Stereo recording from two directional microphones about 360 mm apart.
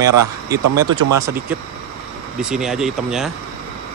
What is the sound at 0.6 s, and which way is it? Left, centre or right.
Speech, right.